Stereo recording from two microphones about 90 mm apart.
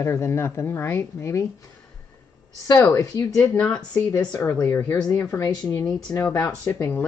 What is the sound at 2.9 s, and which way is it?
Speech, 40° left (ahead or behind).